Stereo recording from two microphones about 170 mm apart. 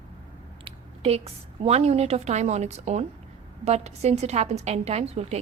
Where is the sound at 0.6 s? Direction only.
35° right (ahead or behind).